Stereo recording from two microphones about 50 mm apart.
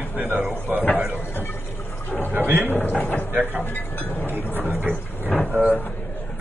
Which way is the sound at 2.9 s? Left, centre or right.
Left.